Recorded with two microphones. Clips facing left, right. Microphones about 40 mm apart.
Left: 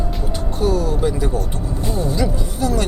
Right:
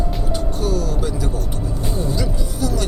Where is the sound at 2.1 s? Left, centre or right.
Left.